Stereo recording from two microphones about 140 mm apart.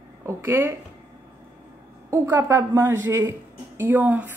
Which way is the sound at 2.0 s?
15° right (ahead or behind).